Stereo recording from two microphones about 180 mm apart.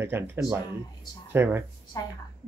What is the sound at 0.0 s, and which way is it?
Speech, 10° right (ahead or behind).